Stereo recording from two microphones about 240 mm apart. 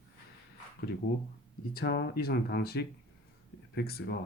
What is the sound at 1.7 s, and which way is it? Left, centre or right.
Speech, left.